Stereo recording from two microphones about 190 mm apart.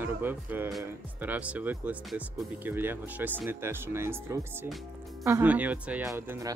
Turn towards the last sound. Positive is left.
turn(degrees=-15)  # may be behind; listen again after turning